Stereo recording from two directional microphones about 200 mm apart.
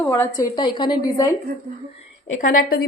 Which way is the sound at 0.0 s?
15° left (ahead or behind).